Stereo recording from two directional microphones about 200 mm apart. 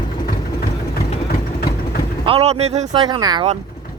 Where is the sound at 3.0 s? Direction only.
20° right (ahead or behind).